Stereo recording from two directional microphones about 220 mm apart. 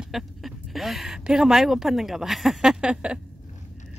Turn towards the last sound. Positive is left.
turn(degrees=-5)  # may be behind; listen again after turning